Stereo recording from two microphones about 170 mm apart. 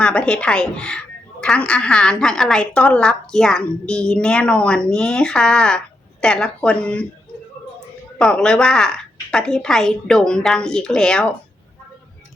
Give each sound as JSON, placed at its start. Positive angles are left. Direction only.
{"t": 0.0, "sound": "speech", "side_deg": 5}
{"t": 8.2, "sound": "speech", "side_deg": 5}